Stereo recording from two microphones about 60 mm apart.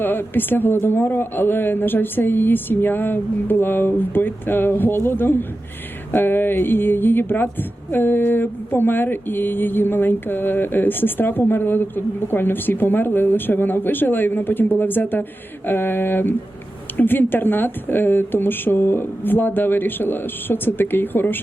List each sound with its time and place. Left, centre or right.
0.0 s a woman's voice: left